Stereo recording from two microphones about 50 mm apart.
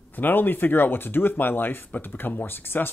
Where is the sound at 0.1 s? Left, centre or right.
Left.